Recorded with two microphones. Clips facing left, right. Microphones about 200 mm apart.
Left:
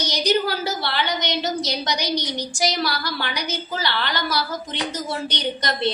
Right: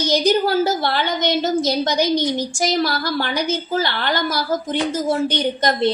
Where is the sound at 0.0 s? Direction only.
50° right (ahead or behind).